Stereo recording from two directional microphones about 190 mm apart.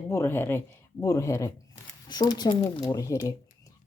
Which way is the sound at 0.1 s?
10° left (ahead or behind).